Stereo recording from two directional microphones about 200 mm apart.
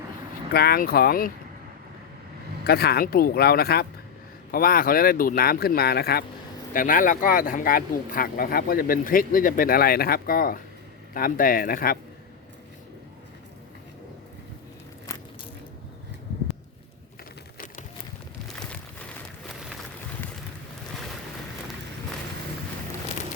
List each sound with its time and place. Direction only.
0.5 s speech: 50° left (ahead or behind)
2.6 s speech: 50° left (ahead or behind)
18.4 s a sound: 5° left (ahead or behind)